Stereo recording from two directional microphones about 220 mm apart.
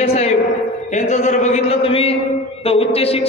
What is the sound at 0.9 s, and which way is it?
A man's voice, 35° left (ahead or behind).